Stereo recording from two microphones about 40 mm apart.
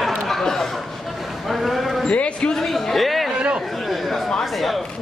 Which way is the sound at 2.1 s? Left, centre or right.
Left.